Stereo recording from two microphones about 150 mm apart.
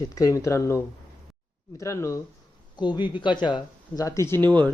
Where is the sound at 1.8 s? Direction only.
20° left (ahead or behind).